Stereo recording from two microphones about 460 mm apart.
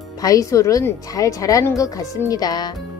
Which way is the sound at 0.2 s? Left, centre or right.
Centre.